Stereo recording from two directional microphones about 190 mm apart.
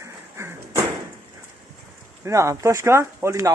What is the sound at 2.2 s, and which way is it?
A man's voice, 15° right (ahead or behind).